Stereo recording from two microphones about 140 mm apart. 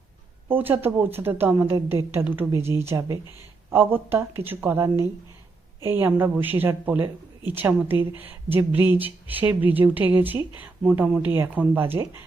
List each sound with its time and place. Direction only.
0.4 s speech: 15° right (ahead or behind)